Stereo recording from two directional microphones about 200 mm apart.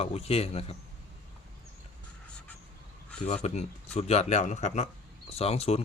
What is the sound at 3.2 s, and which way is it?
Speech, 35° left (ahead or behind).